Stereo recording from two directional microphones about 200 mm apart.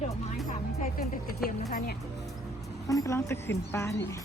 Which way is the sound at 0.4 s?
40° left (ahead or behind).